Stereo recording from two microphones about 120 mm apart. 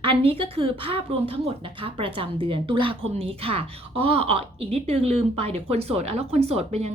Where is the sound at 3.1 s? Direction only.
55° right (ahead or behind).